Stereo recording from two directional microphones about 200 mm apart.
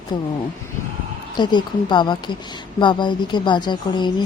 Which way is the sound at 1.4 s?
20° left (ahead or behind).